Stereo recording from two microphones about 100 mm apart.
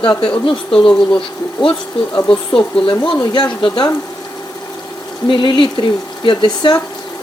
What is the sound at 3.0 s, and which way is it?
Speech, 55° left (ahead or behind).